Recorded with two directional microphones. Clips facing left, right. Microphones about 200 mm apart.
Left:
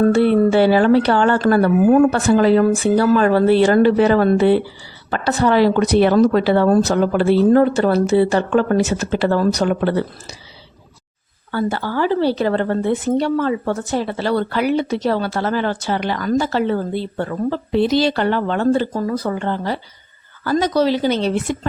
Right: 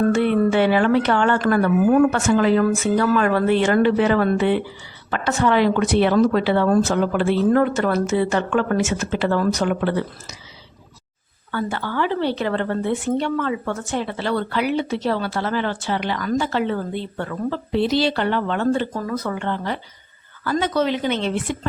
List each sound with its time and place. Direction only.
0.1 s a woman's voice: 35° left (ahead or behind)
11.5 s a woman's voice: 35° left (ahead or behind)